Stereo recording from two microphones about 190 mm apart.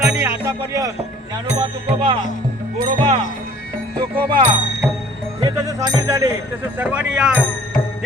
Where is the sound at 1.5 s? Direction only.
25° right (ahead or behind).